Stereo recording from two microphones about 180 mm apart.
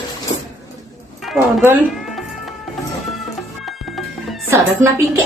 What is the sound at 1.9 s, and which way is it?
Cat, centre (ahead or behind).